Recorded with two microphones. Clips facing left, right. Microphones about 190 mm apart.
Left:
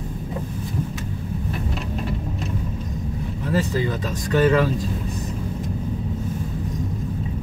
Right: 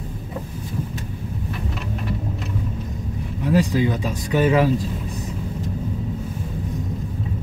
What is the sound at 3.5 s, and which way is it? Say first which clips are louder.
Speech: right 4 dB; 15° right (ahead or behind).